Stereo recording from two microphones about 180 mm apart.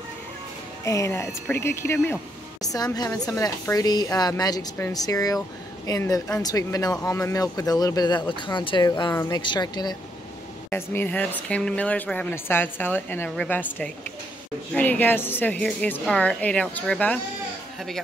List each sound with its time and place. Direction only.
0.8 s a woman's voice: 15° left (ahead or behind)
10.7 s a woman's voice: 10° left (ahead or behind)